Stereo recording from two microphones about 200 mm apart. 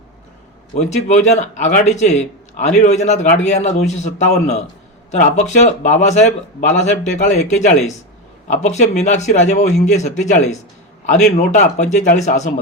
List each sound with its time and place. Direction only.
0.8 s speech: 35° left (ahead or behind)